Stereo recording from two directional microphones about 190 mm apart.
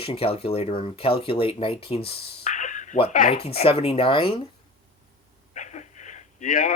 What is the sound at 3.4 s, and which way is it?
Speech, 30° left (ahead or behind).